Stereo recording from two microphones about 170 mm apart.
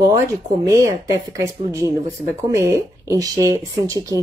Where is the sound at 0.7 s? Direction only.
20° right (ahead or behind).